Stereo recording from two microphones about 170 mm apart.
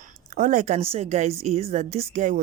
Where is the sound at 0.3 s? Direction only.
50° right (ahead or behind).